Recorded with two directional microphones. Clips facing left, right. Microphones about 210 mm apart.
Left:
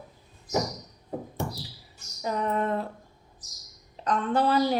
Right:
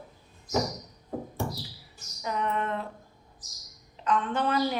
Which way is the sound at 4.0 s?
35° left (ahead or behind).